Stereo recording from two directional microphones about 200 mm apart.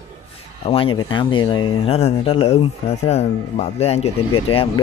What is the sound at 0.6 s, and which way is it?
Speech, 25° left (ahead or behind).